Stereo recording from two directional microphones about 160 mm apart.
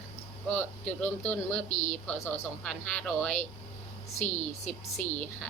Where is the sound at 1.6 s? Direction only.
45° left (ahead or behind).